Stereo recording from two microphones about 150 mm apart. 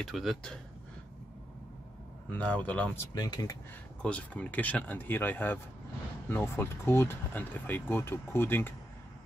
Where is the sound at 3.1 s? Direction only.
25° left (ahead or behind).